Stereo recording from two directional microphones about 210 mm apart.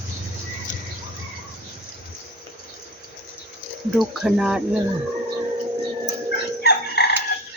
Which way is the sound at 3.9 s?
Centre (ahead or behind).